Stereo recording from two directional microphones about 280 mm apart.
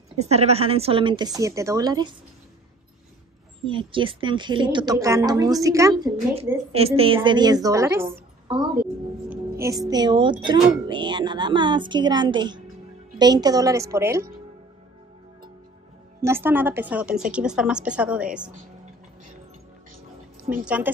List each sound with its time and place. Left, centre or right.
0.2 s a woman's voice: right
3.6 s a woman's voice: centre
16.2 s a woman's voice: centre
20.6 s a woman's voice: centre